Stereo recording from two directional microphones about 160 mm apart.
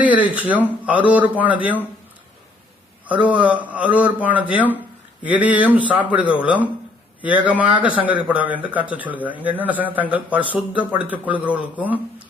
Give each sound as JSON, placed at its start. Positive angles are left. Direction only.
{"t": 0.0, "sound": "speech", "side_deg": -10}
{"t": 3.1, "sound": "speech", "side_deg": -10}